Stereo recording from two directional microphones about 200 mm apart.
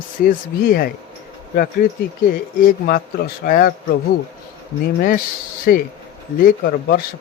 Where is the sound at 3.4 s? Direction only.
45° left (ahead or behind).